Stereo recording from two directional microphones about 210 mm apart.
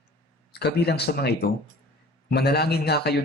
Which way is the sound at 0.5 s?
50° left (ahead or behind).